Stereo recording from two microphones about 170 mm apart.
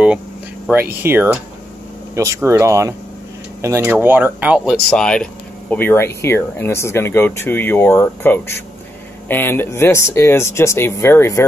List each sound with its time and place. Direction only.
0.7 s speech: 10° right (ahead or behind)
4.8 s speech: 5° left (ahead or behind)